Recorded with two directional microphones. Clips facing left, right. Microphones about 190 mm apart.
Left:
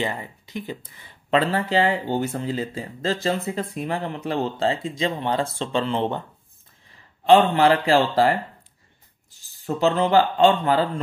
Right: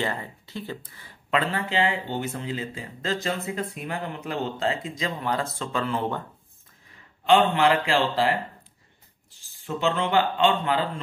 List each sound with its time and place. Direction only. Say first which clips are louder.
0.0 s speech: left 2 dB; 15° left (ahead or behind)
1.3 s speech: left 5 dB; 35° left (ahead or behind)
7.2 s speech: left 4 dB; 35° left (ahead or behind)
9.4 s speech: left 5 dB; 40° left (ahead or behind)